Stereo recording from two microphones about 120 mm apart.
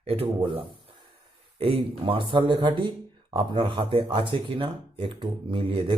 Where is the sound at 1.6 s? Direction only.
55° right (ahead or behind).